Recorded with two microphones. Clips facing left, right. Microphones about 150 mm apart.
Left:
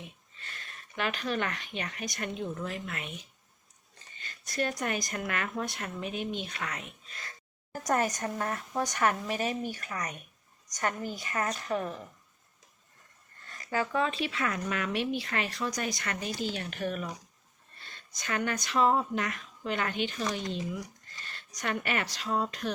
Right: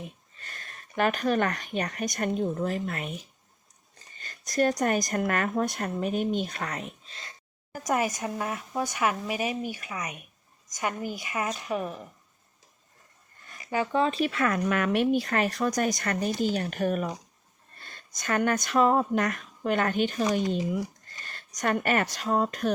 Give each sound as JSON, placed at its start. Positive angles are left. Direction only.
{"t": 0.0, "sound": "a woman's voice", "side_deg": -45}
{"t": 7.9, "sound": "a woman's voice", "side_deg": -5}
{"t": 13.5, "sound": "a sound", "side_deg": -15}
{"t": 14.0, "sound": "speech", "side_deg": -40}
{"t": 14.3, "sound": "speech", "side_deg": -50}